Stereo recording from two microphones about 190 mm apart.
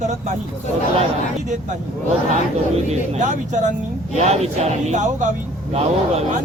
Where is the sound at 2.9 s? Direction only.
40° right (ahead or behind).